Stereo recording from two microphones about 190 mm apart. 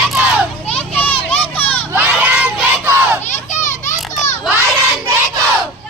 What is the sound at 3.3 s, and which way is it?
Children playing, 40° left (ahead or behind).